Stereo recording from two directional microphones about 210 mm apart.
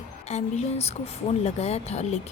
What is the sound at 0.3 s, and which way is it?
Speech, 30° left (ahead or behind).